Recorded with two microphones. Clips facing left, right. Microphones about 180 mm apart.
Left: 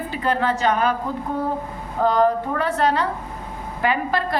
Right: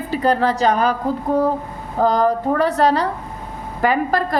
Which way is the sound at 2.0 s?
40° right (ahead or behind).